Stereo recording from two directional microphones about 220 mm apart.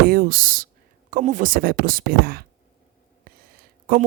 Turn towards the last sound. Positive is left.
turn(degrees=-40)  # may be behind; listen again after turning